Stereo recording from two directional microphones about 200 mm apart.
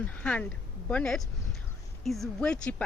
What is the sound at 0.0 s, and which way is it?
Speech, 5° left (ahead or behind).